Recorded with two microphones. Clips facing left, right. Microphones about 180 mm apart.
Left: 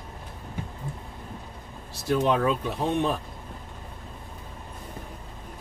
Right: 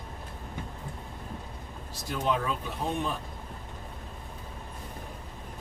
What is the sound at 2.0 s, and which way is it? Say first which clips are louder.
Speech: left 7 dB; 70° left (ahead or behind).